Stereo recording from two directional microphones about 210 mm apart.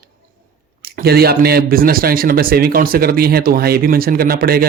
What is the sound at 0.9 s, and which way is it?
Speech, 50° right (ahead or behind).